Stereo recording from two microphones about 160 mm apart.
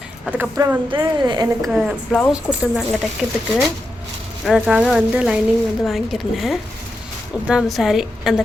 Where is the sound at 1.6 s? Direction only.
Centre (ahead or behind).